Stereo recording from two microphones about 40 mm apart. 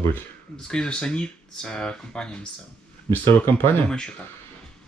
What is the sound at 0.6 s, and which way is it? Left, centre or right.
Speech, left.